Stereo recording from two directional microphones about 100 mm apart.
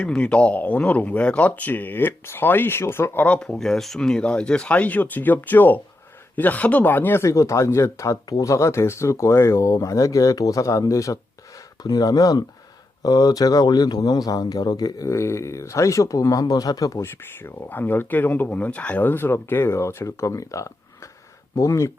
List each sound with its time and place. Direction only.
0.0 s a man's voice: 10° left (ahead or behind); by 17.0 s 40° left (ahead or behind)
17.0 s speech: 20° left (ahead or behind)